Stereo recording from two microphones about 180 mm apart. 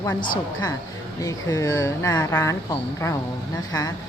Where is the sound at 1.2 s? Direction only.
20° left (ahead or behind).